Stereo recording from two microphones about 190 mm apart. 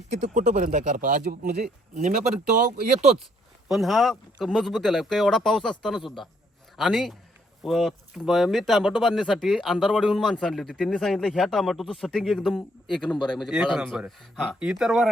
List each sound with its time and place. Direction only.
0.1 s speech: 40° right (ahead or behind)
3.7 s speech: centre (ahead or behind)